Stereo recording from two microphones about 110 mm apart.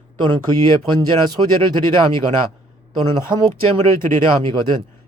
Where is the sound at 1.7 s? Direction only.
50° right (ahead or behind).